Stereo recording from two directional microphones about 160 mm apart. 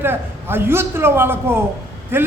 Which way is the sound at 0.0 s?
15° right (ahead or behind).